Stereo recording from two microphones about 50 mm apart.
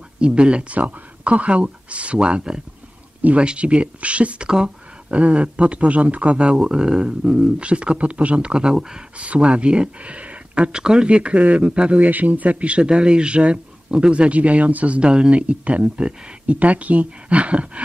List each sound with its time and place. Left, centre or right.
0.2 s speech: right
3.2 s speech: right
5.1 s speech: right
15.0 s speech: centre